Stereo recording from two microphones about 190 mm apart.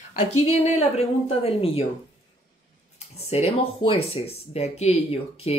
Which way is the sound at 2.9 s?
35° left (ahead or behind).